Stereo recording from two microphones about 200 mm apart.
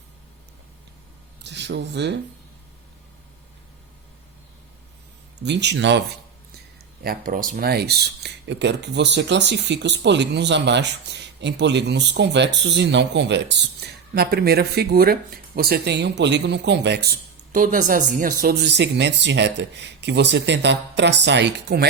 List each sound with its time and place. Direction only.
1.5 s speech: 60° right (ahead or behind)
5.4 s speech: 60° right (ahead or behind)
7.0 s speech: 45° right (ahead or behind)